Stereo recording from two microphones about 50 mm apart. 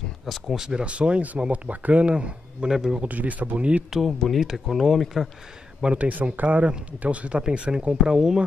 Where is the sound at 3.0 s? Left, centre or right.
Right.